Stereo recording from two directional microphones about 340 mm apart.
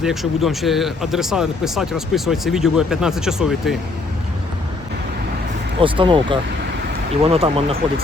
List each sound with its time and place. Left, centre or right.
0.0 s speech: centre
5.8 s speech: centre